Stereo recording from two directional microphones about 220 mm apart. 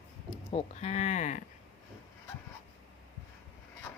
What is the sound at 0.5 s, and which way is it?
Speech, 30° left (ahead or behind).